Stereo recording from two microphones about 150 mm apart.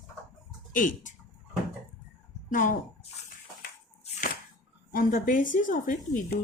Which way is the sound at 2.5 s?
65° left (ahead or behind).